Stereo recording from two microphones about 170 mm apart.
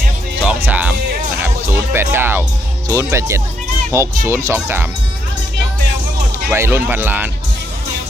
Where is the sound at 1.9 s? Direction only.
15° right (ahead or behind).